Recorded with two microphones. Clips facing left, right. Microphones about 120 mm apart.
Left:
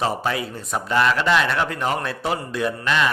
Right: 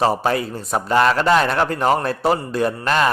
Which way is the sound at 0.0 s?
40° right (ahead or behind).